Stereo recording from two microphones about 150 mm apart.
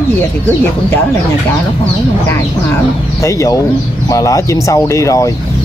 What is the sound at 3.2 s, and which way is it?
Speech, 20° left (ahead or behind).